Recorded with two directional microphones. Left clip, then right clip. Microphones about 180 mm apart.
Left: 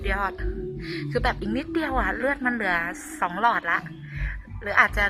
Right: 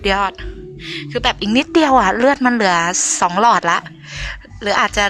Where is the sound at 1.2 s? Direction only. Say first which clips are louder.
Right 8 dB; 20° right (ahead or behind).